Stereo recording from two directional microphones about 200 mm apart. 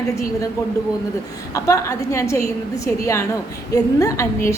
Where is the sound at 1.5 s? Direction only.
15° left (ahead or behind).